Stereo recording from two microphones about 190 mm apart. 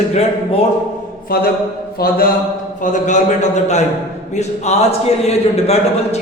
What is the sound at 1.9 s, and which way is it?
Speech, 50° left (ahead or behind).